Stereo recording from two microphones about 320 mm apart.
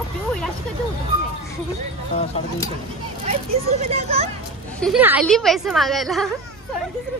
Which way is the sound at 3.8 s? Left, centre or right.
Centre.